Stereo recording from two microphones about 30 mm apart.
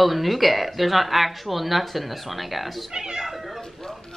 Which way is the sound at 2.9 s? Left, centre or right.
Right.